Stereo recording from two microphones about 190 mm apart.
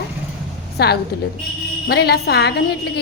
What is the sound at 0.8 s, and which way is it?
A woman's voice, 60° left (ahead or behind).